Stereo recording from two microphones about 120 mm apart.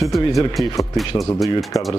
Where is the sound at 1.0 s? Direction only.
Centre (ahead or behind).